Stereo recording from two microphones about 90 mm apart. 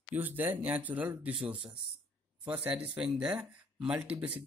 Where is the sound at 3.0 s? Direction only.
10° right (ahead or behind).